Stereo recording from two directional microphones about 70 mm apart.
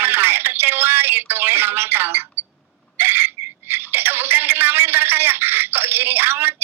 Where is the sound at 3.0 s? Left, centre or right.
Right.